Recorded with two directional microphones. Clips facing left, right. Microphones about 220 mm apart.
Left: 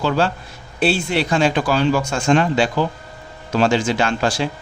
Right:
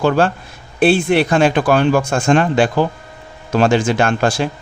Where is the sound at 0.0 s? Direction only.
50° right (ahead or behind).